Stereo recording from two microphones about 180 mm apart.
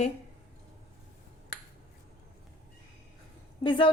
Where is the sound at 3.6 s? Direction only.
25° left (ahead or behind).